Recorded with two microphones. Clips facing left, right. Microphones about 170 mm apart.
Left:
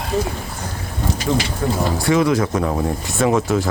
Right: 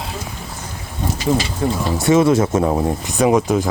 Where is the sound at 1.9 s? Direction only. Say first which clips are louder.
Right 5 dB; 25° right (ahead or behind).